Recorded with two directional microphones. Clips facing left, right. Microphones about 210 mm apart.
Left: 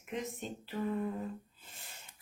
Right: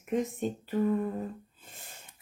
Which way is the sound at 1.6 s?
45° right (ahead or behind).